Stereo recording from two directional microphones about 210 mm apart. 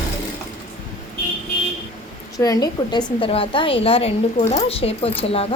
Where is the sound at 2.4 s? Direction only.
20° left (ahead or behind).